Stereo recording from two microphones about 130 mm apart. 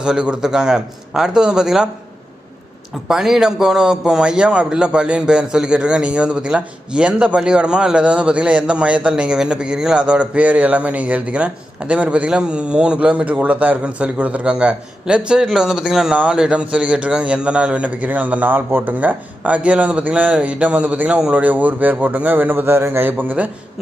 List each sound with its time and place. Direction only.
0.0 s a man's voice: 5° right (ahead or behind)
3.1 s a man's voice: 5° right (ahead or behind)